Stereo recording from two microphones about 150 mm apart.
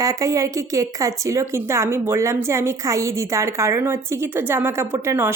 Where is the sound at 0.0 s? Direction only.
20° right (ahead or behind).